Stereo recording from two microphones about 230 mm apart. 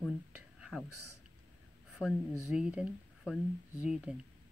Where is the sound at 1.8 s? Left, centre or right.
Centre.